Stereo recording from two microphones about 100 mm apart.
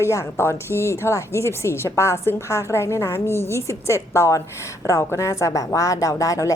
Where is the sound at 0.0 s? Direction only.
30° left (ahead or behind).